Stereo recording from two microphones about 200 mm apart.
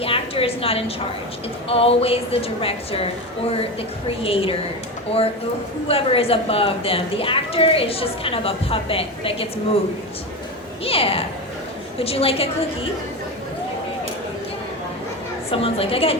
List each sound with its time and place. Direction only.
0.0 s a woman's voice: 30° left (ahead or behind)
4.2 s a woman's voice: 30° left (ahead or behind)
5.9 s a woman's voice: 30° left (ahead or behind)
10.8 s a woman's voice: 30° left (ahead or behind)
15.4 s a woman's voice: 30° left (ahead or behind)